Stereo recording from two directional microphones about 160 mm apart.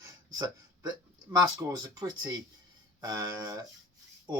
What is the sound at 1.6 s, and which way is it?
Speech, 25° right (ahead or behind).